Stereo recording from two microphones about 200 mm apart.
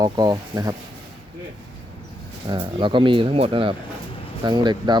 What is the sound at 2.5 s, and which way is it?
Speech, 25° right (ahead or behind).